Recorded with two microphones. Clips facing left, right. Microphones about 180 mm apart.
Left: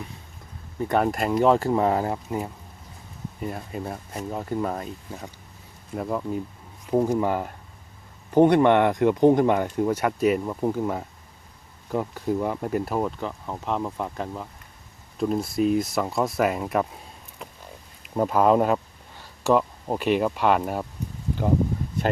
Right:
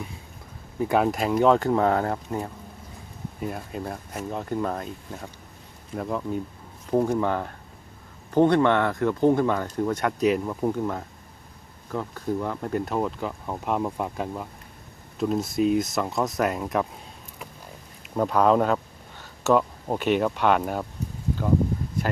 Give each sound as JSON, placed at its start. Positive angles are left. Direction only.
{"t": 0.8, "sound": "speech", "side_deg": -5}
{"t": 18.2, "sound": "speech", "side_deg": 5}